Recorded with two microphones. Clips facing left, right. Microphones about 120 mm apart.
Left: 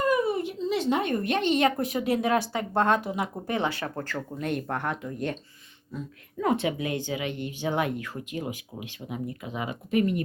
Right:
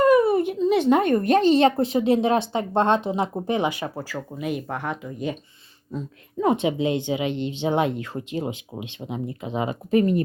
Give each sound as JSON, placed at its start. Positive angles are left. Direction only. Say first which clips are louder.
{"t": 0.0, "sound": "speech", "louder": "right 8 dB", "side_deg": -60}
{"t": 5.9, "sound": "speech", "louder": "right 5 dB", "side_deg": -20}